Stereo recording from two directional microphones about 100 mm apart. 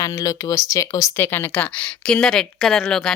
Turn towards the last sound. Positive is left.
turn(degrees=5)  # may be behind; listen again after turning